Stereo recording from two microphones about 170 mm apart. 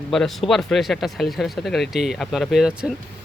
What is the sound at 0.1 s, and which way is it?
Speech, centre (ahead or behind).